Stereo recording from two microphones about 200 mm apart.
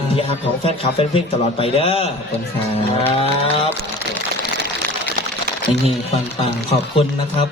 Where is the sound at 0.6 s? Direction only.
30° left (ahead or behind).